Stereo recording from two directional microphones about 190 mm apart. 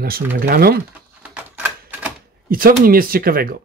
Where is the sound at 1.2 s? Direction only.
10° right (ahead or behind).